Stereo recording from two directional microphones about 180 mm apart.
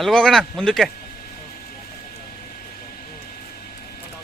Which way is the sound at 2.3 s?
55° left (ahead or behind).